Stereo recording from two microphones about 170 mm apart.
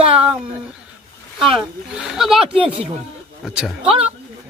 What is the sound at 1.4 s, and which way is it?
A man's voice, centre (ahead or behind).